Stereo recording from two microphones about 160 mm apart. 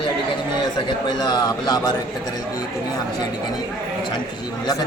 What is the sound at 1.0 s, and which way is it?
Speech, 25° left (ahead or behind).